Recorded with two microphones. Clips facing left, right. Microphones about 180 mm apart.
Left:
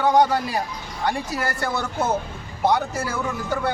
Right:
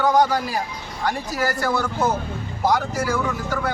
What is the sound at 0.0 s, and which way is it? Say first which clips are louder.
Speech: even; 25° left (ahead or behind).